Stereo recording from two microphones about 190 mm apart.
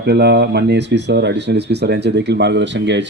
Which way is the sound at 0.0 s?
60° right (ahead or behind).